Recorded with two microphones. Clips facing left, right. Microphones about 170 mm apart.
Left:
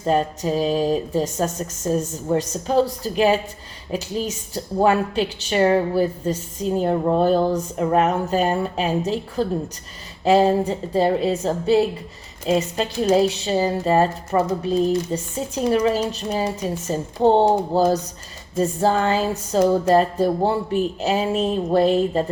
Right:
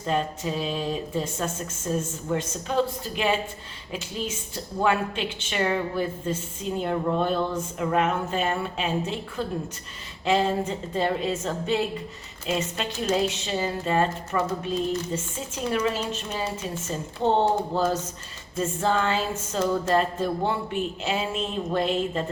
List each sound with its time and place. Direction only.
0.0 s a woman's voice: 40° left (ahead or behind)